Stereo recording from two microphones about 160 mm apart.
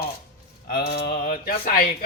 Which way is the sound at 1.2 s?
55° left (ahead or behind).